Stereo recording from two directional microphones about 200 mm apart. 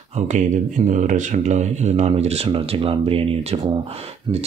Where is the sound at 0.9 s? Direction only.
40° right (ahead or behind).